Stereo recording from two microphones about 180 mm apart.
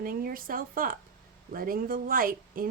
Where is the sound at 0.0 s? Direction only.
55° right (ahead or behind).